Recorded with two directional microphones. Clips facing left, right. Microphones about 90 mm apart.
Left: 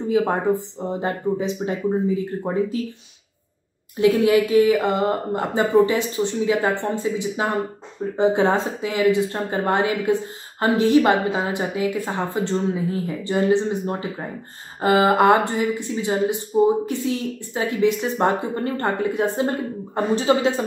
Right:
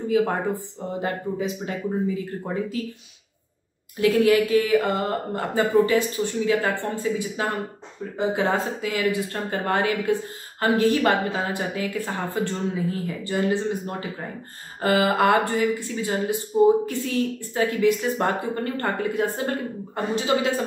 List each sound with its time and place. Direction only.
0.1 s speech: 20° left (ahead or behind)
4.0 s a woman's voice: 25° left (ahead or behind)